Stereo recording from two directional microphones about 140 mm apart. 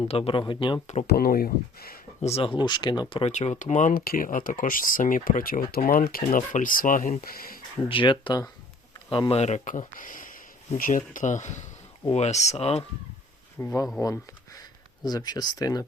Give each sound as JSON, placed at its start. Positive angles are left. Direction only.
{"t": 0.0, "sound": "speech", "side_deg": 40}
{"t": 1.1, "sound": "speech", "side_deg": 90}
{"t": 2.2, "sound": "speech", "side_deg": 40}
{"t": 3.3, "sound": "speech", "side_deg": 55}
{"t": 7.9, "sound": "speech", "side_deg": 35}
{"t": 9.3, "sound": "speech", "side_deg": 55}
{"t": 13.6, "sound": "speech", "side_deg": 15}